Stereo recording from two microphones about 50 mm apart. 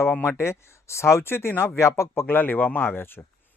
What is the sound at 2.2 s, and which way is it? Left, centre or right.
Speech, left.